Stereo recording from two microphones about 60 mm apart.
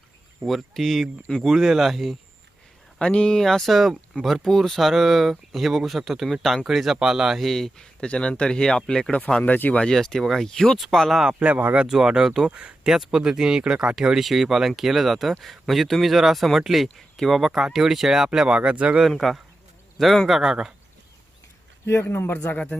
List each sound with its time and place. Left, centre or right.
0.4 s speech: centre
3.0 s speech: centre
7.4 s speech: centre
9.4 s speech: left
9.8 s speech: centre
11.3 s speech: right
11.9 s speech: centre
12.9 s speech: centre
19.0 s speech: centre
21.8 s speech: left
22.5 s speech: left